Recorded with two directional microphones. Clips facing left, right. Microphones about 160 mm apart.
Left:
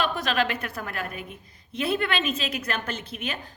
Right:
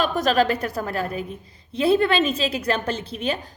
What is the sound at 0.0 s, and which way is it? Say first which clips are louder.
A woman's voice: right 6 dB; 40° right (ahead or behind).